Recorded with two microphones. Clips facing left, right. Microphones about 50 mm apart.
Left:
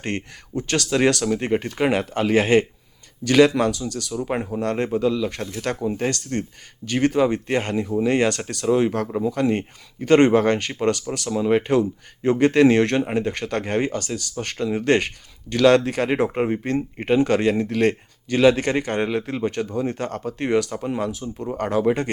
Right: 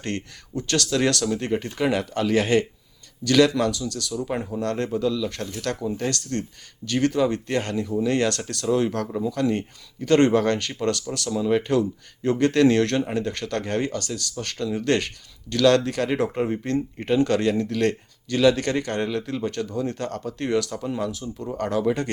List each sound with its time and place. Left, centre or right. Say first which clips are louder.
0.0 s speech: left 2 dB; left